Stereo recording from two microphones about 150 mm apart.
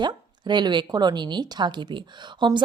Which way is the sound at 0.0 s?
30° right (ahead or behind).